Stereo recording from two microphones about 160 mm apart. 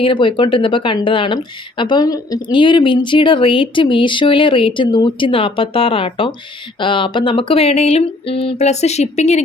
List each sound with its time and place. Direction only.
0.0 s speech: 30° left (ahead or behind)